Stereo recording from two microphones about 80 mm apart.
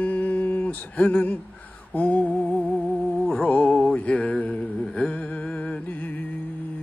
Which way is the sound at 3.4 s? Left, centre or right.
Centre.